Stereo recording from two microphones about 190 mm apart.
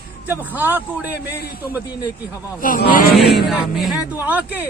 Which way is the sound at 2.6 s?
45° left (ahead or behind).